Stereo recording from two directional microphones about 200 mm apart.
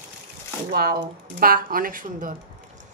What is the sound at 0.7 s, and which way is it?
Speech, 50° right (ahead or behind).